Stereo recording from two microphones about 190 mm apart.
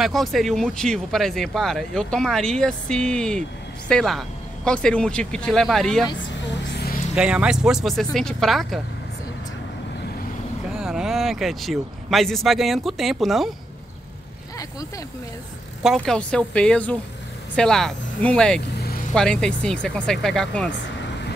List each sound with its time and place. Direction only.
0.0 s speech: centre (ahead or behind)
6.7 s a sound: 55° left (ahead or behind)
7.2 s speech: 5° right (ahead or behind)
10.7 s speech: 5° right (ahead or behind)
15.8 s speech: centre (ahead or behind)
18.7 s vehicle: 60° left (ahead or behind)
19.1 s speech: 5° left (ahead or behind)